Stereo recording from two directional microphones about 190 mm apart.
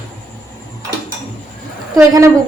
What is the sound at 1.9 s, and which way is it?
Speech, 15° right (ahead or behind).